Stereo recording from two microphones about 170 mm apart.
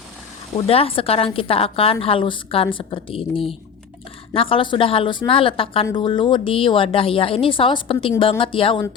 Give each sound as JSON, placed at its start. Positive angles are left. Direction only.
{"t": 0.5, "sound": "a woman's voice", "side_deg": 35}